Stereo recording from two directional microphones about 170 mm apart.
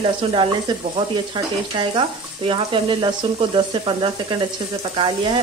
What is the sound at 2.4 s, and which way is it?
Speech, 30° right (ahead or behind).